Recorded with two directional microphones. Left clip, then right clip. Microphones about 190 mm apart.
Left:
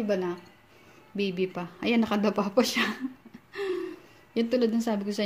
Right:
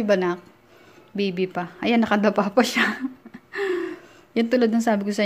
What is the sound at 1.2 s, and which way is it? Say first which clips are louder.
A woman's voice: right 5 dB; 10° right (ahead or behind).